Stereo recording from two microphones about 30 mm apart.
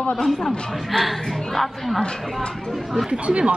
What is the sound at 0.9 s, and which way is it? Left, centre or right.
A woman's voice, centre.